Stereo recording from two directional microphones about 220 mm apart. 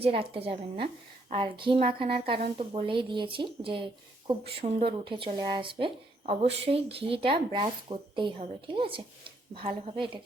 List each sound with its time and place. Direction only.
0.0 s speech: 25° right (ahead or behind)